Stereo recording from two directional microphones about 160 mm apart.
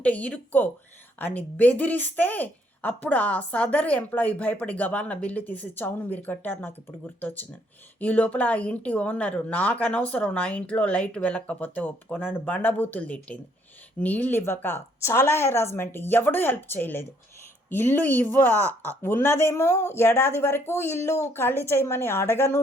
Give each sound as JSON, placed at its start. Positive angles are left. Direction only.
{"t": 0.0, "sound": "speech", "side_deg": 10}
{"t": 7.9, "sound": "speech", "side_deg": 10}
{"t": 18.6, "sound": "speech", "side_deg": -20}
{"t": 19.0, "sound": "speech", "side_deg": 15}